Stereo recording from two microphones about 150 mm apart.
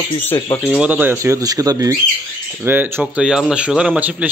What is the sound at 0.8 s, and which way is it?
A man's voice, 10° right (ahead or behind).